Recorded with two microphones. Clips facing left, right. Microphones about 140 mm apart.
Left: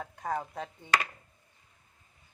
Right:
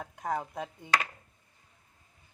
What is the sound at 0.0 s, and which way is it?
Speech, 10° right (ahead or behind).